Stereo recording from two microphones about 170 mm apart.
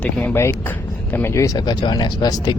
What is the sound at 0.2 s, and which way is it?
Speech, 15° left (ahead or behind).